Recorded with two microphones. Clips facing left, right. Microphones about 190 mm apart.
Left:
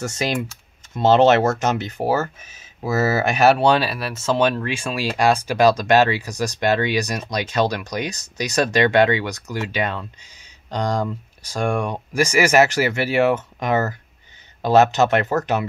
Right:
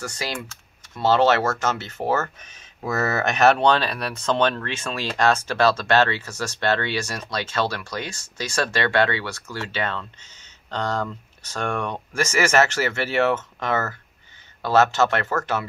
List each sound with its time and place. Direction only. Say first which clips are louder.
0.0 s speech: left 7 dB; 20° left (ahead or behind)